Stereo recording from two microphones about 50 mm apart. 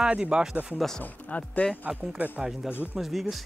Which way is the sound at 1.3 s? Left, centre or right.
Left.